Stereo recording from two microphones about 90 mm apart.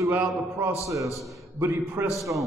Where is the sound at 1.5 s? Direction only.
20° right (ahead or behind).